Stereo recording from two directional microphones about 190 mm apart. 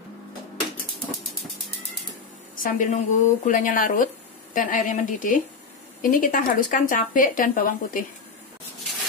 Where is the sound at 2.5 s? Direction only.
45° left (ahead or behind).